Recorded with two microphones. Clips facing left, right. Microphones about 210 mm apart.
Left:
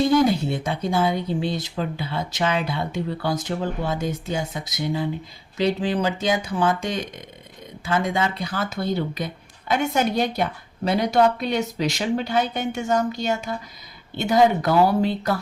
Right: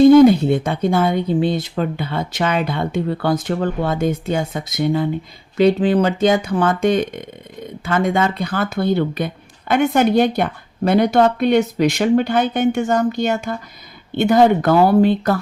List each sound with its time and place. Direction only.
0.3 s speech: 55° right (ahead or behind)